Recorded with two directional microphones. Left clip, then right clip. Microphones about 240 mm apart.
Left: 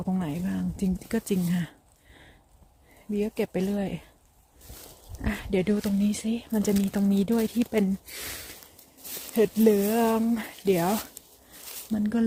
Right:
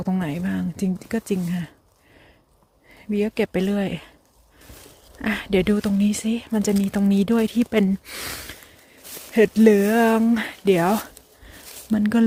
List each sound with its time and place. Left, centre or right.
0.0 s speech: right; by 1.7 s centre
3.1 s speech: right
5.2 s speech: right